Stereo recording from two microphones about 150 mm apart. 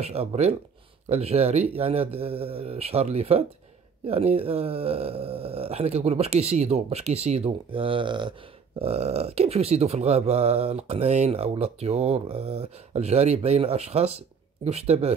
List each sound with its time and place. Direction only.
0.0 s speech: 45° right (ahead or behind)